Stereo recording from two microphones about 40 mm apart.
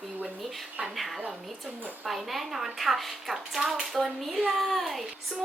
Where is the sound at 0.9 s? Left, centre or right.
Centre.